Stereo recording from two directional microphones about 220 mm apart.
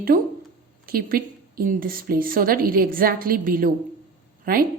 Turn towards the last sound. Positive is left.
turn(degrees=-40)  # may be behind; listen again after turning